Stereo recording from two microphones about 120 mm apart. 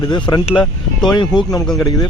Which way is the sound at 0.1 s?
35° left (ahead or behind).